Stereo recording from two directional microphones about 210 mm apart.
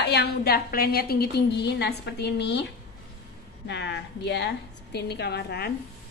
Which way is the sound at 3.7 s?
55° left (ahead or behind).